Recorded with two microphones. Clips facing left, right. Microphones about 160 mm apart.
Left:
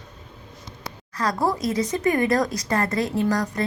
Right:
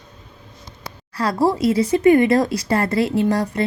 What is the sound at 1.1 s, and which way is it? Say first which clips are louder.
Speech: right 5 dB; 30° right (ahead or behind).